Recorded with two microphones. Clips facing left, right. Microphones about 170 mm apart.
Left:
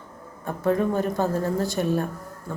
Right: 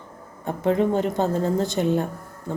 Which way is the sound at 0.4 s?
20° right (ahead or behind).